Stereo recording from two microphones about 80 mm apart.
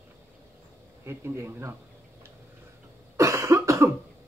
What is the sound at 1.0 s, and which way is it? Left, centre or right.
Speech, right.